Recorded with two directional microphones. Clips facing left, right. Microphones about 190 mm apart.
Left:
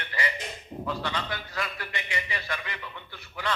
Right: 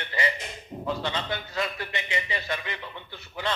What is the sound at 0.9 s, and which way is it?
A man's voice, 25° right (ahead or behind).